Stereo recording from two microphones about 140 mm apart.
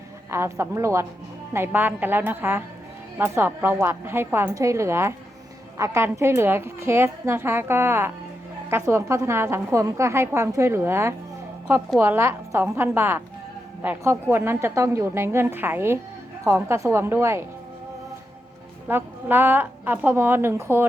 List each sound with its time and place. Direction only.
0.3 s a woman's voice: 20° right (ahead or behind)
18.9 s a woman's voice: 15° right (ahead or behind)